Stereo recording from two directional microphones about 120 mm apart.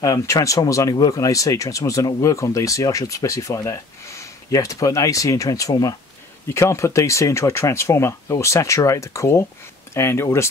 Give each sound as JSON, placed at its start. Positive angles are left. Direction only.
{"t": 0.0, "sound": "speech", "side_deg": 25}